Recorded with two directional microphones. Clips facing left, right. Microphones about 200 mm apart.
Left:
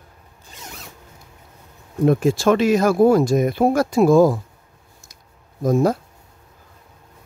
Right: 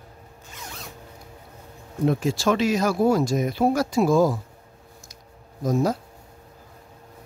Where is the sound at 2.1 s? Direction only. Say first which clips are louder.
Left 6 dB; 55° left (ahead or behind).